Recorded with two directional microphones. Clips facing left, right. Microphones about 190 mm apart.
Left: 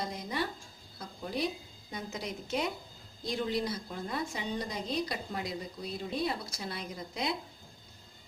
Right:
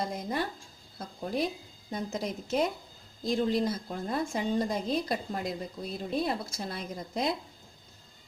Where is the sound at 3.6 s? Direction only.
45° right (ahead or behind).